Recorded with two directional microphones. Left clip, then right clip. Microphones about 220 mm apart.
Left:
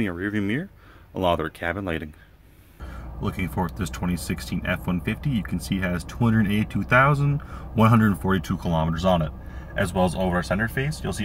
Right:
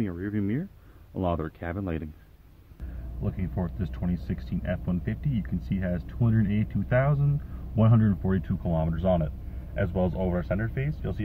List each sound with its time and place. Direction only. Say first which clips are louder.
0.0 s speech: left 5 dB; 25° left (ahead or behind); by 2.0 s 10° left (ahead or behind)
3.3 s speech: left 7 dB; 15° left (ahead or behind); by 11.0 s centre (ahead or behind)